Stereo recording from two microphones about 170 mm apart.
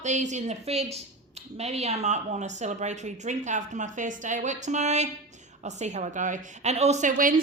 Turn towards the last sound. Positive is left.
turn(degrees=-50)  # may be behind; listen again after turning